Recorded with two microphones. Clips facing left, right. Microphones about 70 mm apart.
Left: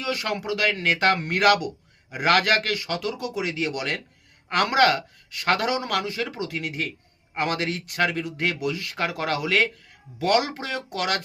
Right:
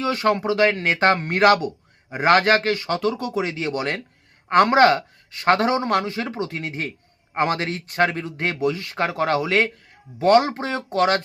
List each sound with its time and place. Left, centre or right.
0.0 s speech: right